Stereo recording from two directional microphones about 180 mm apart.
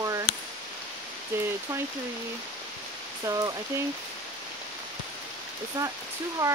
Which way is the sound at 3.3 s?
20° right (ahead or behind).